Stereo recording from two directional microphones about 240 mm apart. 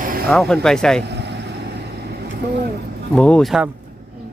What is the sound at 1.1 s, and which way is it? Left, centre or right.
Vehicle, right.